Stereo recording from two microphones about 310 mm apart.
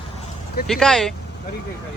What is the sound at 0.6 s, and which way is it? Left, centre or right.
Speech, centre.